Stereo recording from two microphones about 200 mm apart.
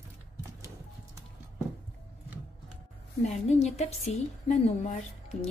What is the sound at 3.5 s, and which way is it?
A woman's voice, 35° left (ahead or behind).